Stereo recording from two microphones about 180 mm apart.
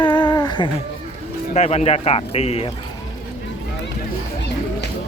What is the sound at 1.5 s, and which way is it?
Speech, 35° left (ahead or behind).